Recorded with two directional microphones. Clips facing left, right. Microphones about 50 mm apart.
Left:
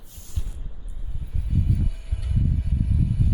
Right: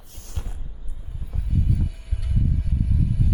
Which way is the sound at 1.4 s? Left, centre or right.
Centre.